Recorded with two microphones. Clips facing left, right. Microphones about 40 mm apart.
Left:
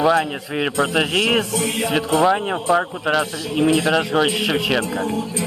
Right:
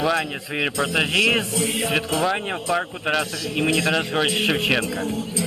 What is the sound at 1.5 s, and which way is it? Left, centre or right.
Music, left.